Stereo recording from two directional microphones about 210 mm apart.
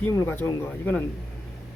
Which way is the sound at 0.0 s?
10° left (ahead or behind).